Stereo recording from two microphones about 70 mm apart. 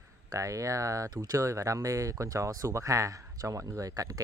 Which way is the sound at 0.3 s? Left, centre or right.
Right.